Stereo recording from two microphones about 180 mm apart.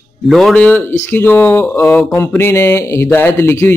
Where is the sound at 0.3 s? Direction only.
Centre (ahead or behind).